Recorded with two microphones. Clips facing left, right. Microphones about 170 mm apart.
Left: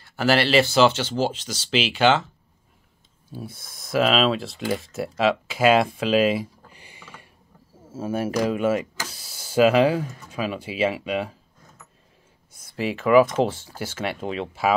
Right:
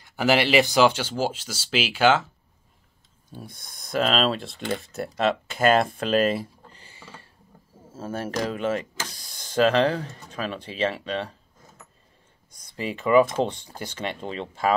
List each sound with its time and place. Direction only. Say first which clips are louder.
0.0 s speech: left 1 dB; 15° right (ahead or behind)
3.3 s speech: left 5 dB; 5° left (ahead or behind)
6.8 s a sound: even; 15° left (ahead or behind)
7.9 s speech: left 5 dB; 10° left (ahead or behind)
12.5 s speech: left 4 dB; 5° left (ahead or behind)